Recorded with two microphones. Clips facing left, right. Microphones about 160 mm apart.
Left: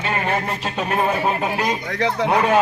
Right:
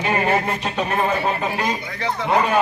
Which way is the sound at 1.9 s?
80° left.